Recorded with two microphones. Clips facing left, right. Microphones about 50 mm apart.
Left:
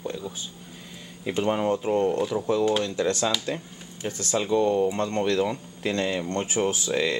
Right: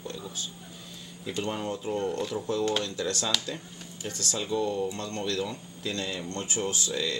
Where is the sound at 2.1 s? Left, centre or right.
Centre.